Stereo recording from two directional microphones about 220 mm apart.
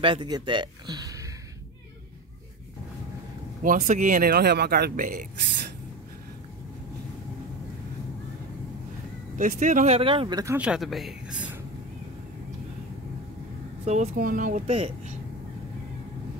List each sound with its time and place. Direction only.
0.0 s speech: 20° right (ahead or behind)
3.6 s speech: 35° right (ahead or behind)
9.4 s speech: 35° right (ahead or behind); by 11.5 s 5° right (ahead or behind)
13.8 s speech: 30° right (ahead or behind)
14.7 s speech: 25° right (ahead or behind)